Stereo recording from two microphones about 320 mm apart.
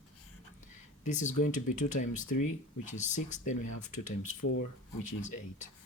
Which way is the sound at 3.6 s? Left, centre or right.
Left.